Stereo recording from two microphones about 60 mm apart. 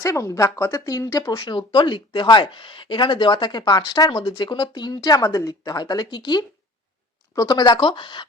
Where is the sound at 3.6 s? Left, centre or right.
Left.